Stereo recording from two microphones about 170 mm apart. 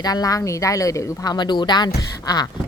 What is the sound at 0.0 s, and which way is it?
Speech, 20° left (ahead or behind).